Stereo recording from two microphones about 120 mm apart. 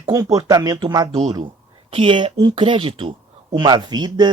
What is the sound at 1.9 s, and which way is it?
Speech, 50° right (ahead or behind).